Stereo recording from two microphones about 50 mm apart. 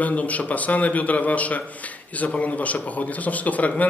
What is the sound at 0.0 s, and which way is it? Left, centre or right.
A man's voice, left.